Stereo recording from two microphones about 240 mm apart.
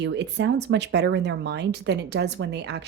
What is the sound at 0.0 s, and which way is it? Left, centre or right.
A woman's voice, right.